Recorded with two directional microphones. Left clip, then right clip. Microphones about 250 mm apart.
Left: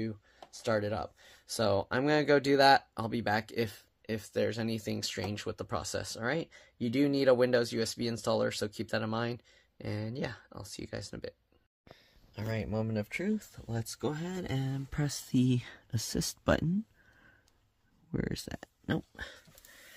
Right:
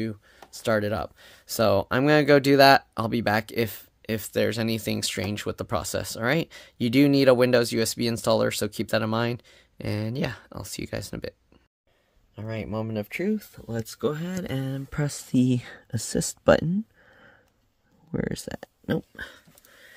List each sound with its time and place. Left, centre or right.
0.0 s speech: right
12.4 s speech: centre
18.1 s speech: centre